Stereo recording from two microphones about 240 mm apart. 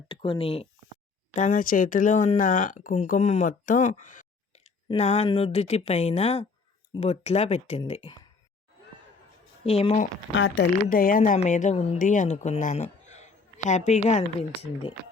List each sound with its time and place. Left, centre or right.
0.1 s a woman's voice: left
9.6 s a woman's voice: left
10.3 s a woman's voice: left